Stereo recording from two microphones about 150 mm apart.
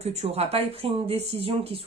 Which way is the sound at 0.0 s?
45° right (ahead or behind).